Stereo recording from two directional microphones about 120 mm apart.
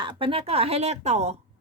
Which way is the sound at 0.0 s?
45° right (ahead or behind).